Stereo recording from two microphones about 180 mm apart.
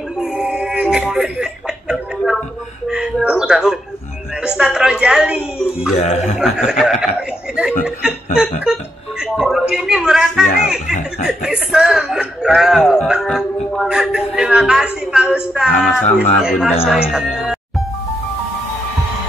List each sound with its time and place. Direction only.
0.2 s a sound: 5° right (ahead or behind)
4.4 s speech: 5° right (ahead or behind)
5.9 s a man's voice: 35° left (ahead or behind)
6.3 s speech: centre (ahead or behind)
17.1 s music: centre (ahead or behind)